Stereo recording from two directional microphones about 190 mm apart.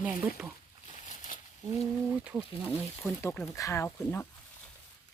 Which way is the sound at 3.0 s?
10° left (ahead or behind).